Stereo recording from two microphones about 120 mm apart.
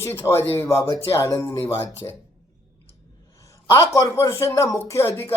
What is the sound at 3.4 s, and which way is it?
A man's voice, 25° left (ahead or behind).